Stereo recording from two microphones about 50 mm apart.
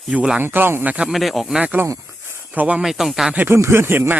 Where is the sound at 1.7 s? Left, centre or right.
Right.